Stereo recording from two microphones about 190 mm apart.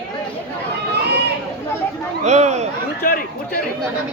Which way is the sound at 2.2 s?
35° right (ahead or behind).